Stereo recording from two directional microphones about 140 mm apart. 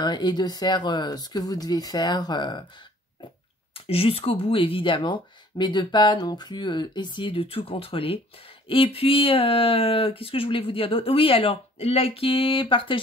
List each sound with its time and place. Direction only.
0.0 s speech: 30° left (ahead or behind)
3.7 s speech: 40° left (ahead or behind)